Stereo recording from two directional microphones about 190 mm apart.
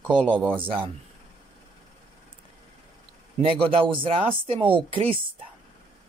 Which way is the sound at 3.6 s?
30° right (ahead or behind).